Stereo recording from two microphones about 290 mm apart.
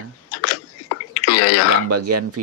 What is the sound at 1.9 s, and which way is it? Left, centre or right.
Speech, right.